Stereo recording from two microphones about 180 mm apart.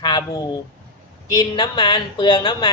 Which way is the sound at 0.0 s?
20° left (ahead or behind).